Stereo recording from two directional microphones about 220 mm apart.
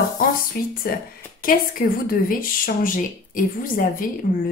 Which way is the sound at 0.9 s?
45° left (ahead or behind).